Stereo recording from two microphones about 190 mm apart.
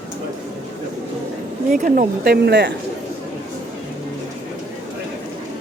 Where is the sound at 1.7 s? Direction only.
50° right (ahead or behind).